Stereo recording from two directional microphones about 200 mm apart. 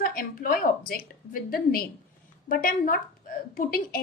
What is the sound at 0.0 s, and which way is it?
A woman's voice, 45° left (ahead or behind).